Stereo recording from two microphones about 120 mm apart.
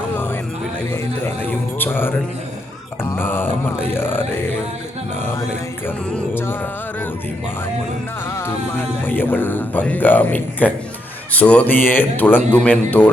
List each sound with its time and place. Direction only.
1.5 s music: 15° left (ahead or behind)
3.0 s a sound: 20° left (ahead or behind)
6.1 s music: 10° left (ahead or behind)
9.0 s speech: 15° left (ahead or behind)